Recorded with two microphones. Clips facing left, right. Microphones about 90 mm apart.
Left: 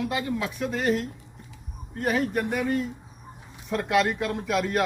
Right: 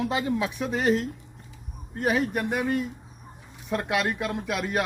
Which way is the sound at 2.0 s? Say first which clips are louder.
Even; 10° right (ahead or behind).